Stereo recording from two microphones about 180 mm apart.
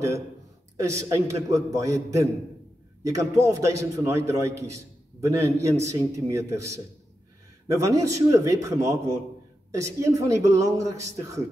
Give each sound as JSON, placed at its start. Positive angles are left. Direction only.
{"t": 1.0, "sound": "a man's voice", "side_deg": -15}